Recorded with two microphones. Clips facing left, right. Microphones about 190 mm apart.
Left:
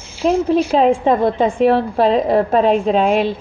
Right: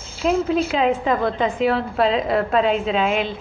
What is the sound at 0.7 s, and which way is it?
Speech, 30° left (ahead or behind).